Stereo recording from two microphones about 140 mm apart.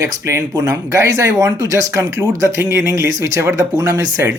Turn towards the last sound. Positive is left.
turn(degrees=-25)  # may be behind; listen again after turning